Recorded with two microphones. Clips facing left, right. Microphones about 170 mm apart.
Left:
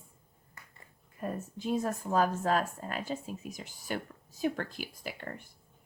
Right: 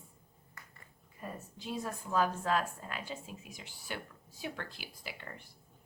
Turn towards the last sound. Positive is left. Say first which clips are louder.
# left 6 dB
turn(degrees=50)  # may be behind; listen again after turning